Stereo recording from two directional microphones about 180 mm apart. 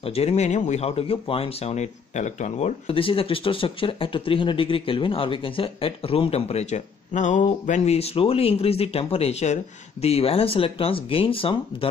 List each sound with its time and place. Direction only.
0.0 s speech: 35° left (ahead or behind)